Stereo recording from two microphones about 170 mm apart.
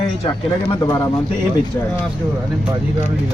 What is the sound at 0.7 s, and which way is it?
Speech, 20° left (ahead or behind).